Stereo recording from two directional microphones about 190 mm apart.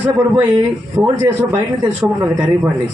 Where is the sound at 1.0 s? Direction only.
20° right (ahead or behind).